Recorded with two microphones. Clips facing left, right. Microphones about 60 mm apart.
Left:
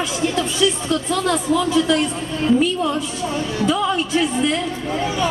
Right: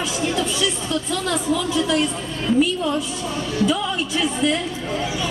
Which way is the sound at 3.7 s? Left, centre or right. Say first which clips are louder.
Left 3 dB; left.